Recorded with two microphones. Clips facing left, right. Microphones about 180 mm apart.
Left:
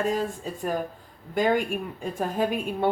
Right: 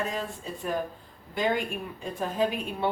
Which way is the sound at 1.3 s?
45° left (ahead or behind).